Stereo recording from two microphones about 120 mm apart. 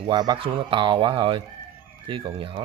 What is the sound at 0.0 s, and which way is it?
Speech, 35° right (ahead or behind).